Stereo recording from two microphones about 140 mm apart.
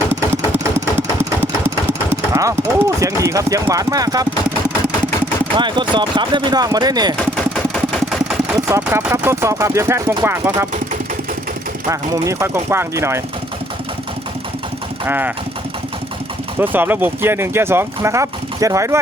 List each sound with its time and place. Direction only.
1.4 s speech: 15° right (ahead or behind)
5.5 s speech: 35° right (ahead or behind)
7.2 s engine: 5° left (ahead or behind)
8.5 s speech: 20° right (ahead or behind)
11.9 s speech: 20° right (ahead or behind)
15.0 s speech: 15° right (ahead or behind)
16.6 s speech: 15° right (ahead or behind)